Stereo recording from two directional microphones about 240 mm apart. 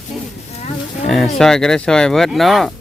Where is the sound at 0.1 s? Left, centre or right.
Centre.